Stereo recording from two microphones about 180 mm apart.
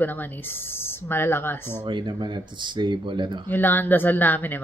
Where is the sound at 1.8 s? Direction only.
25° right (ahead or behind).